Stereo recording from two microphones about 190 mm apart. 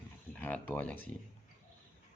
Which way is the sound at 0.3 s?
10° left (ahead or behind).